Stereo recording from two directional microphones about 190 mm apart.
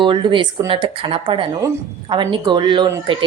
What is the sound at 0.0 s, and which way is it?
A woman's voice, 25° right (ahead or behind).